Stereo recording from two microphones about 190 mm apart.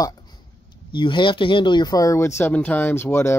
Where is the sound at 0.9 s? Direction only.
25° left (ahead or behind).